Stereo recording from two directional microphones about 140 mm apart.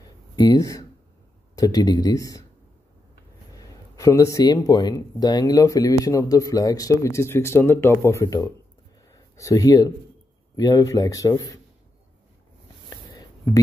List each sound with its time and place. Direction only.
0.4 s speech: 25° left (ahead or behind)
3.5 s speech: 25° left (ahead or behind)
12.9 s a sound: 25° left (ahead or behind)